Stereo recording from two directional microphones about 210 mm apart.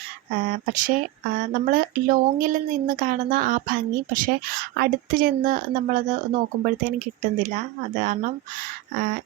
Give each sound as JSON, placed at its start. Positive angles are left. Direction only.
{"t": 0.7, "sound": "speech", "side_deg": -40}